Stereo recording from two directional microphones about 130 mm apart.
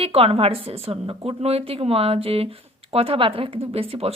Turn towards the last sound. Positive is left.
turn(degrees=-45)  # may be behind; listen again after turning